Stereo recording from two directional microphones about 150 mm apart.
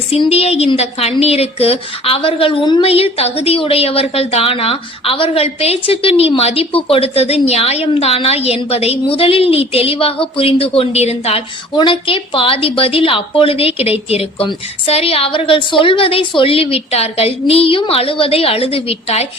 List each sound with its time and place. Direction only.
0.1 s a woman's voice: 40° left (ahead or behind)